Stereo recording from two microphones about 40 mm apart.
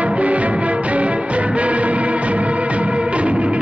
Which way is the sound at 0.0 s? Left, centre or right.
Right.